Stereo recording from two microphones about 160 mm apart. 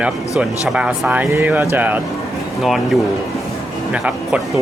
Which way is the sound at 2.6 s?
Centre (ahead or behind).